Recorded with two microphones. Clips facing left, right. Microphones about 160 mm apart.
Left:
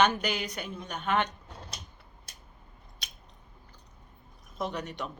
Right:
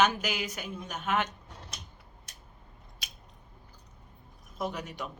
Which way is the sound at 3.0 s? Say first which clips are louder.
Even; 5° right (ahead or behind).